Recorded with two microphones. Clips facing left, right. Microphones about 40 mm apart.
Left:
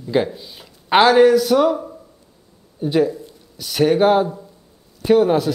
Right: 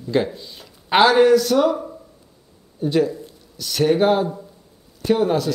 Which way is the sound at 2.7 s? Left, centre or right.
Centre.